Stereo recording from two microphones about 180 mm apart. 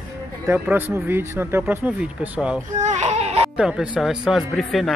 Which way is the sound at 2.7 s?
40° right (ahead or behind).